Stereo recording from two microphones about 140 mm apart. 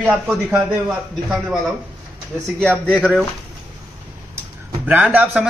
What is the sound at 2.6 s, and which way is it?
Speech, 10° left (ahead or behind).